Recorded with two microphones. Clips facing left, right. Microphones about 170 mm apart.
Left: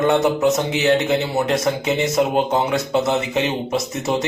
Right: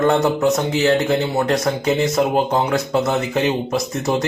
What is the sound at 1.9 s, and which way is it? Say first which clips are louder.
Speech: right 3 dB; 20° left (ahead or behind).